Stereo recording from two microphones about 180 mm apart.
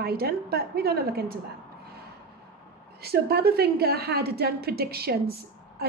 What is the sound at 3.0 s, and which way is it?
A woman's voice, 60° right (ahead or behind).